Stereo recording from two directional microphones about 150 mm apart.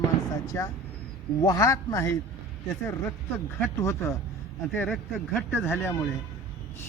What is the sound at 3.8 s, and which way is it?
Speech, 20° left (ahead or behind).